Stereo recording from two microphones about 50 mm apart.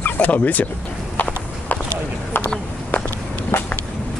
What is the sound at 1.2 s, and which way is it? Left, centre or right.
Clip-clop, left.